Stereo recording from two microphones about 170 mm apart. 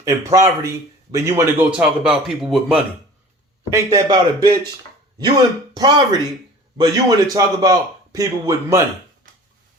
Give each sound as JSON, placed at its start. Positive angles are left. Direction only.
{"t": 0.0, "sound": "a man's voice", "side_deg": -20}
{"t": 3.7, "sound": "a man's voice", "side_deg": -20}
{"t": 5.7, "sound": "a man's voice", "side_deg": -25}
{"t": 9.2, "sound": "a sound", "side_deg": -55}